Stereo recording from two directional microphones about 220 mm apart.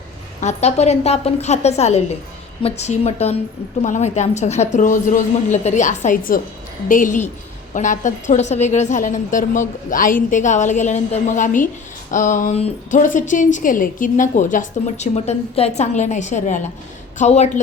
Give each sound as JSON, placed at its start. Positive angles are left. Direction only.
{"t": 0.3, "sound": "a woman's voice", "side_deg": 30}